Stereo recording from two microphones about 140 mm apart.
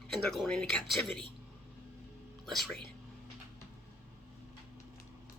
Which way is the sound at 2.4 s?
Centre (ahead or behind).